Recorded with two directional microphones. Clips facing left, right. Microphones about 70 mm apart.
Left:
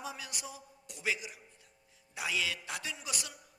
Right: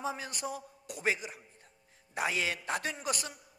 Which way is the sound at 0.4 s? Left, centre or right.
Right.